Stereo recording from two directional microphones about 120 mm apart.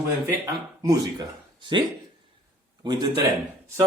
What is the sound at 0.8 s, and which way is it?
Speech, 30° right (ahead or behind).